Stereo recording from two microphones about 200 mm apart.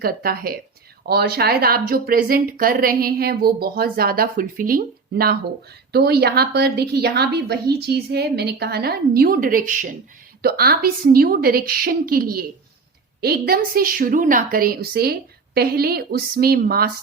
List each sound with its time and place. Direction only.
0.0 s speech: 50° right (ahead or behind)